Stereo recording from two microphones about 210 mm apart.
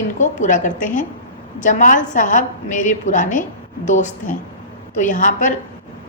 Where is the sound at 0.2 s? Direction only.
35° left (ahead or behind).